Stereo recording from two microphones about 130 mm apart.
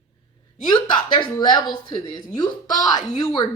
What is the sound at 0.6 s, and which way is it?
Speech, 35° left (ahead or behind).